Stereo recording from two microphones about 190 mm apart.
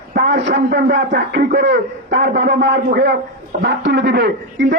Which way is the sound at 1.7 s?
70° right (ahead or behind).